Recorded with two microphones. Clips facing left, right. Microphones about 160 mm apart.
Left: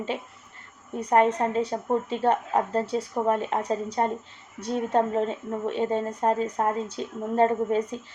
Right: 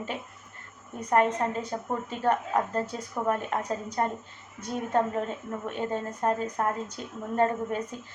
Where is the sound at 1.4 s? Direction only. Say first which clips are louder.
Left 4 dB; 25° left (ahead or behind).